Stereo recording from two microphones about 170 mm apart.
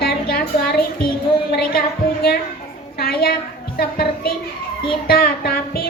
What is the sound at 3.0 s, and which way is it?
A woman's voice, 60° left (ahead or behind).